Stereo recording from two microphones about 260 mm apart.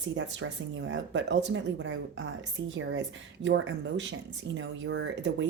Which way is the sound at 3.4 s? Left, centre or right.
Right.